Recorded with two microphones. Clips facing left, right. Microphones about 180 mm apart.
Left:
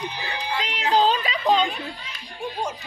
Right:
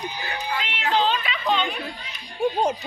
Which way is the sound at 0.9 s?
40° left (ahead or behind).